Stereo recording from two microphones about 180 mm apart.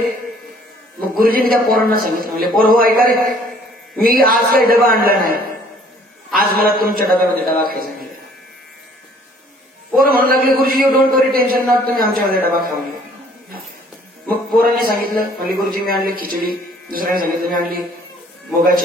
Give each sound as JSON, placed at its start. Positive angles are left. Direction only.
{"t": 1.1, "sound": "a man's voice", "side_deg": -55}
{"t": 9.9, "sound": "a man's voice", "side_deg": -55}
{"t": 14.6, "sound": "a man's voice", "side_deg": -55}